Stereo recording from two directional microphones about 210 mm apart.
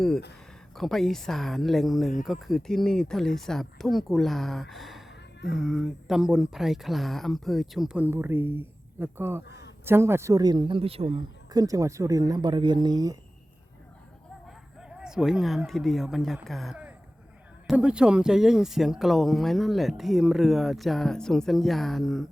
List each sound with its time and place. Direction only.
0.8 s speech: centre (ahead or behind)
9.5 s a sound: 55° left (ahead or behind)
9.8 s speech: 10° right (ahead or behind)
14.4 s speech: 5° right (ahead or behind)